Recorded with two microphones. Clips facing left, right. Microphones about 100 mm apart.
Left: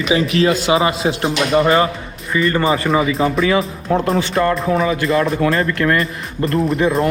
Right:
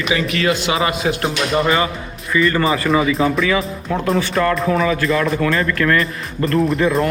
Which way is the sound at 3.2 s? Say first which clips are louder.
Even; centre (ahead or behind).